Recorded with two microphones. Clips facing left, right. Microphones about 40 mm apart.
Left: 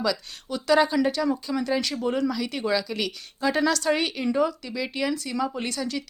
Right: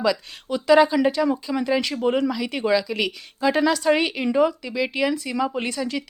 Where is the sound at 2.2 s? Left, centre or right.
Centre.